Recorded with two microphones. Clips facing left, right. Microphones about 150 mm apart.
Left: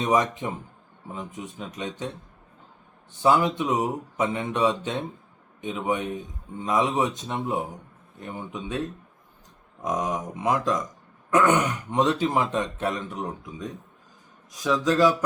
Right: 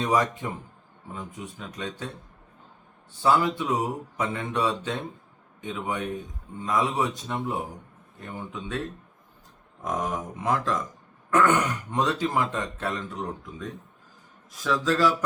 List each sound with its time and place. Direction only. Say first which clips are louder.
0.0 s speech: left 1 dB; 20° left (ahead or behind)
9.8 s speech: left 2 dB; 20° left (ahead or behind)